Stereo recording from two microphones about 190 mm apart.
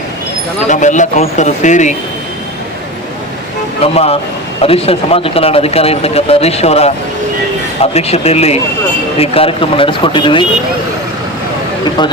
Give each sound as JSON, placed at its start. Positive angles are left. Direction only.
{"t": 0.7, "sound": "speech", "side_deg": 40}
{"t": 3.9, "sound": "speech", "side_deg": 30}